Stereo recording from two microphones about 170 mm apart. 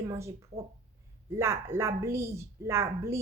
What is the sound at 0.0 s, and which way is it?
A woman's voice, 20° right (ahead or behind).